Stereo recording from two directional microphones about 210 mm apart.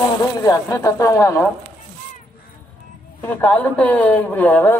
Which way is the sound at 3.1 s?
10° left (ahead or behind).